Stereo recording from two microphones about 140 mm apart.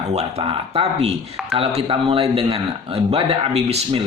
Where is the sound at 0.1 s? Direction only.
50° right (ahead or behind).